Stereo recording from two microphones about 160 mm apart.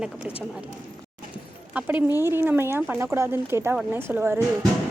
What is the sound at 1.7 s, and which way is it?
Speech, 10° right (ahead or behind).